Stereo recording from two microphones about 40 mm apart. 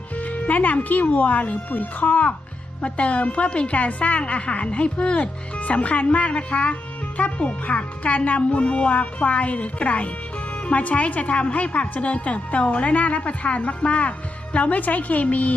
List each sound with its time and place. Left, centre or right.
0.2 s a woman's voice: left